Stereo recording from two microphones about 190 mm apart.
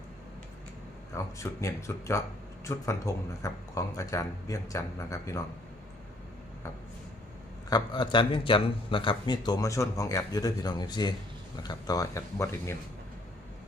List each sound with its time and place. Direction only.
1.1 s speech: 15° left (ahead or behind)
7.7 s speech: 25° left (ahead or behind)